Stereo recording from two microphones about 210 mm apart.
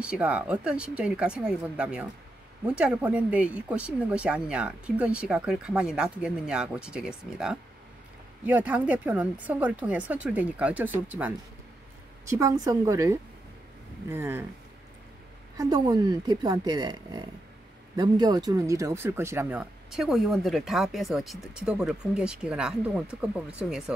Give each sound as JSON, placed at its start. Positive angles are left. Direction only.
{"t": 0.0, "sound": "speech", "side_deg": -5}
{"t": 15.5, "sound": "speech", "side_deg": -20}